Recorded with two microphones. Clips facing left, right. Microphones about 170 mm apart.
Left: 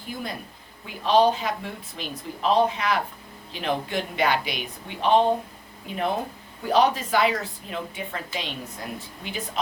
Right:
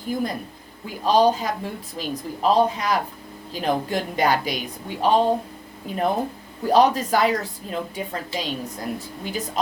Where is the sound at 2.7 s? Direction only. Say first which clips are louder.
Right 2 dB; 40° right (ahead or behind).